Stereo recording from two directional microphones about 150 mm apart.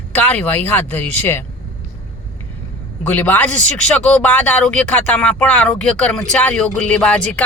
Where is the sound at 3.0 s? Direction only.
10° left (ahead or behind).